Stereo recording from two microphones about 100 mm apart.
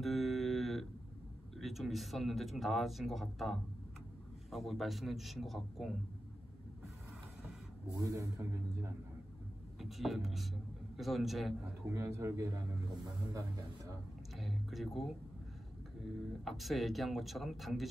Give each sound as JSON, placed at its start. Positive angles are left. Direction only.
{"t": 0.0, "sound": "a sound", "side_deg": 0}
{"t": 1.6, "sound": "speech", "side_deg": 0}
{"t": 7.9, "sound": "speech", "side_deg": -35}
{"t": 9.8, "sound": "speech", "side_deg": 0}
{"t": 11.8, "sound": "speech", "side_deg": -25}
{"t": 14.3, "sound": "a sound", "side_deg": 0}
{"t": 16.4, "sound": "speech", "side_deg": 0}